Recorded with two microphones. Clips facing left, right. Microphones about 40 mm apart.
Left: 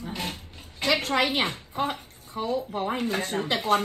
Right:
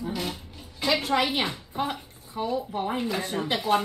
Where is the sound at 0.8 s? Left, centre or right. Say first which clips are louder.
Even; left.